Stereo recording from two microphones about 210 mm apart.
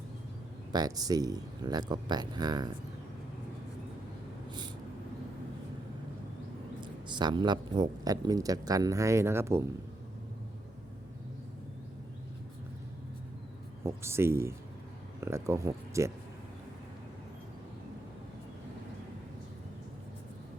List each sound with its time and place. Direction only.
0.7 s speech: 20° right (ahead or behind)
6.8 s a man's voice: 20° right (ahead or behind)
13.8 s a man's voice: 10° right (ahead or behind)